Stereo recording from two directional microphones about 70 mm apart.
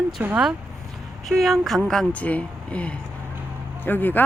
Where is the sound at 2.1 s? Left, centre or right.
Left.